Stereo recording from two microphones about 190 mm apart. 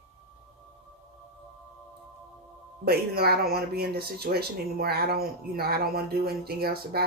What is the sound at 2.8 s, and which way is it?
Speech, 55° right (ahead or behind).